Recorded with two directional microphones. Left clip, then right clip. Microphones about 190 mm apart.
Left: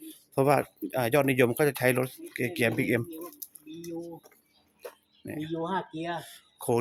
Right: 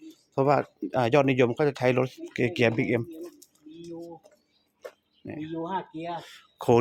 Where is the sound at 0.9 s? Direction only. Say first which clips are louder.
Right 4 dB; 25° right (ahead or behind).